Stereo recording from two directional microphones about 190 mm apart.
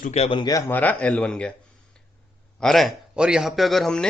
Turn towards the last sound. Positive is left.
turn(degrees=0)  # may be behind; listen again after turning